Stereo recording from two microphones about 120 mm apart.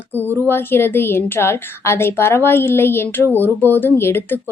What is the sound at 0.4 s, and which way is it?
Speech, 20° left (ahead or behind).